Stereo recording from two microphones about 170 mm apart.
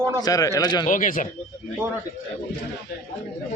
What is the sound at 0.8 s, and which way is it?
Speech, 50° left (ahead or behind).